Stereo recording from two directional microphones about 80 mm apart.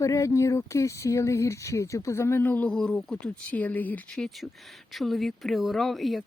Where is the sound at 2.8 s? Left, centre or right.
Centre.